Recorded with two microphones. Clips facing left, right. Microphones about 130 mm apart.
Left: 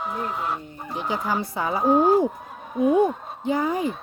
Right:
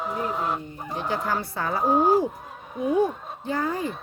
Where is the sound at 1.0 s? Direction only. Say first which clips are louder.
Left 1 dB; 15° left (ahead or behind).